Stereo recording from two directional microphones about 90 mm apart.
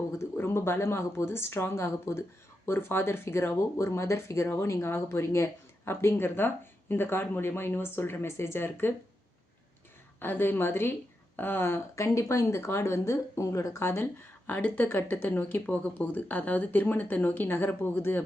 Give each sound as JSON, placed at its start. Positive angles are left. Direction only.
{"t": 0.1, "sound": "speech", "side_deg": 30}
{"t": 10.2, "sound": "speech", "side_deg": 25}